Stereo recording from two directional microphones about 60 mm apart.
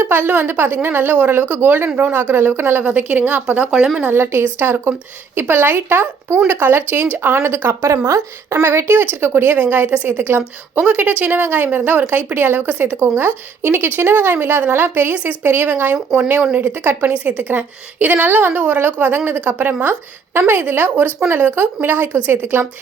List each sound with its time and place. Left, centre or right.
0.0 s speech: right
2.8 s a woman's voice: right
3.4 s speech: centre
4.0 s a woman's voice: right
16.0 s speech: centre
16.6 s a woman's voice: right